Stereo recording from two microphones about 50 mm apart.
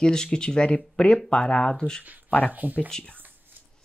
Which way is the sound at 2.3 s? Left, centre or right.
Left.